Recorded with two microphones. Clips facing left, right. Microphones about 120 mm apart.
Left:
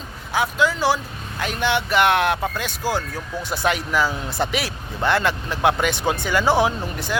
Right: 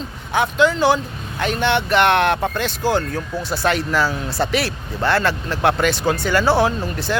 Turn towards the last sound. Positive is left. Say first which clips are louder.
# right 3 dB
turn(degrees=15)  # may be behind; listen again after turning